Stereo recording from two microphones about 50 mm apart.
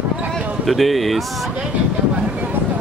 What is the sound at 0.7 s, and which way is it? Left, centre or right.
Speech, centre.